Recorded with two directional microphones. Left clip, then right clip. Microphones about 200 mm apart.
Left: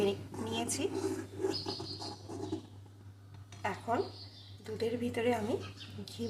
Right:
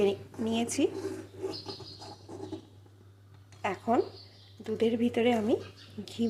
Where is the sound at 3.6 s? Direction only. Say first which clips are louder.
Right 6 dB; 40° right (ahead or behind).